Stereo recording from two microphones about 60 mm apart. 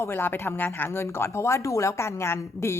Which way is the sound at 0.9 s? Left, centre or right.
Left.